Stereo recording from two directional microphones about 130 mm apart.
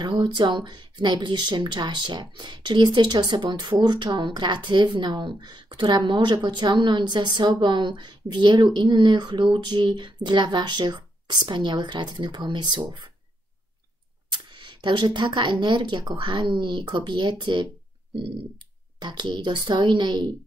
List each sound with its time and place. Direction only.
0.0 s speech: 35° right (ahead or behind)
14.3 s speech: 40° right (ahead or behind)
18.9 s speech: 35° right (ahead or behind)